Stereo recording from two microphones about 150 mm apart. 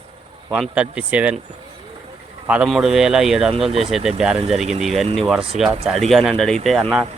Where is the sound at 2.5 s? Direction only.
5° right (ahead or behind).